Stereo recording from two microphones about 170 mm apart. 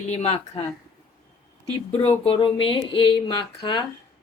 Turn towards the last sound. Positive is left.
turn(degrees=25)  # may be behind; listen again after turning